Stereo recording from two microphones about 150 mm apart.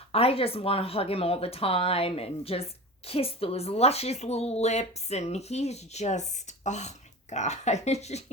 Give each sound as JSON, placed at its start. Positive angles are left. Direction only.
{"t": 0.1, "sound": "speech", "side_deg": 40}